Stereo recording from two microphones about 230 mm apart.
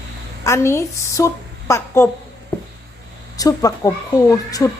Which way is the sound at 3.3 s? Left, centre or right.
Centre.